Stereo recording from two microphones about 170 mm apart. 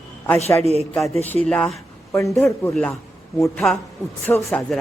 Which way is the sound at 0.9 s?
Centre (ahead or behind).